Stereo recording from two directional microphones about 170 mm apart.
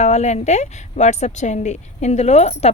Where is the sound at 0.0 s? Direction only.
40° left (ahead or behind).